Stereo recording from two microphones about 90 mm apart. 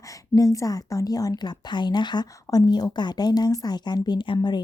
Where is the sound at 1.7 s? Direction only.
55° left (ahead or behind).